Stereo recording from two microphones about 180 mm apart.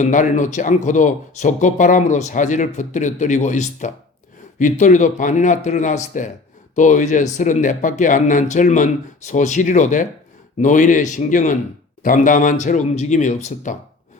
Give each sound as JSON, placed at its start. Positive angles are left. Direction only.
{"t": 0.0, "sound": "speech", "side_deg": 45}